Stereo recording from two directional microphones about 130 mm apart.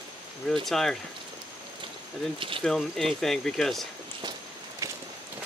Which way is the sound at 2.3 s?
40° right (ahead or behind).